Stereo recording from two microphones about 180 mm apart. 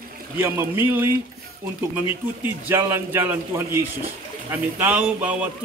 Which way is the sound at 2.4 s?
15° right (ahead or behind).